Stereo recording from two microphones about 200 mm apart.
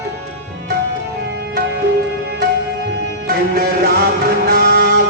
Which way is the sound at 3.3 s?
50° right (ahead or behind).